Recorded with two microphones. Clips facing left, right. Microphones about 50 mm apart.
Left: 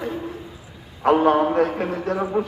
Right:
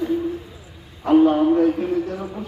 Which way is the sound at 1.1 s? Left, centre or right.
Left.